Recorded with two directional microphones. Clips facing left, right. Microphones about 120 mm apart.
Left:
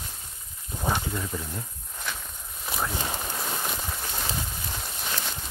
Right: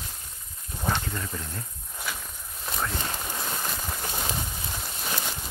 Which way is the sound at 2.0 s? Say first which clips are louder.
Even; centre (ahead or behind).